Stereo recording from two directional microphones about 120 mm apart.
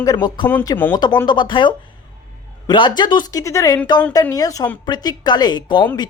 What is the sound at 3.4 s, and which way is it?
A woman's voice, 25° left (ahead or behind).